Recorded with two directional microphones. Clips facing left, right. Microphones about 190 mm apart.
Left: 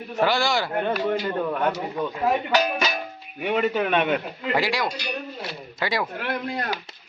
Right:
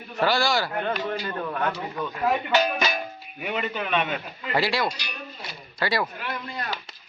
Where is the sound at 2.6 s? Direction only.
5° left (ahead or behind).